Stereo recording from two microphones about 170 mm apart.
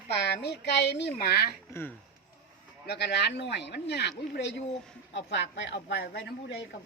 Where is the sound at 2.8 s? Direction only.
75° left (ahead or behind).